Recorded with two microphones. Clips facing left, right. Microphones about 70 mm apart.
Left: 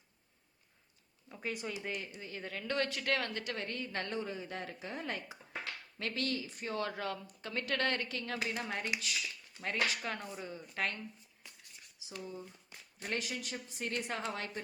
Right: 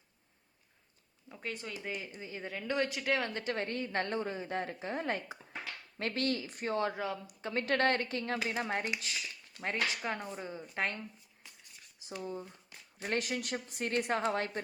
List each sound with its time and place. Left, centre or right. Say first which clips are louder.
1.3 s speech: left 1 dB; centre
2.2 s a woman's voice: right 5 dB; centre; by 6.7 s right
6.7 s a woman's voice: right 5 dB; right
7.0 s speech: right 2 dB; centre
7.4 s a woman's voice: right 5 dB; right
12.2 s speech: right 5 dB; right
14.1 s a woman's voice: right 7 dB; right